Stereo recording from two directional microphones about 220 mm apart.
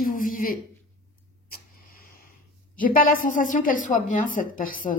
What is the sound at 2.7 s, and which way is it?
A woman's voice, 40° left (ahead or behind).